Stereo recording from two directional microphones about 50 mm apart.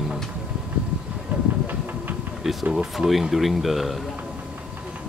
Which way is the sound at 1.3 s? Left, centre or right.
Right.